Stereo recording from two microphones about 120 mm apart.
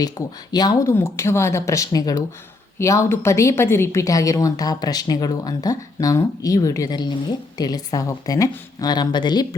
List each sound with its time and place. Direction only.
0.2 s a woman's voice: 30° left (ahead or behind)